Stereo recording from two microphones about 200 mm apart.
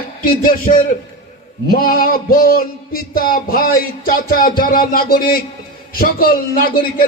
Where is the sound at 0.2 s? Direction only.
45° left (ahead or behind).